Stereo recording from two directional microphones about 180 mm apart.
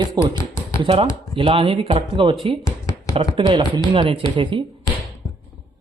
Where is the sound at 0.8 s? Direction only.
35° right (ahead or behind).